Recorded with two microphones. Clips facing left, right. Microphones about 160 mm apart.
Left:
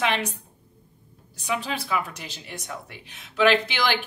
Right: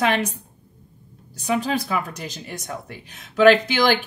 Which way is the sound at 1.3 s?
40° right (ahead or behind).